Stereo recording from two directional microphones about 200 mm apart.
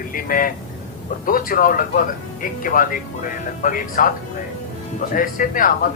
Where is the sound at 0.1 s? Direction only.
45° left (ahead or behind).